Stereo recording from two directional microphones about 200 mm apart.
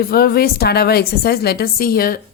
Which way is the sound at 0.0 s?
50° left (ahead or behind).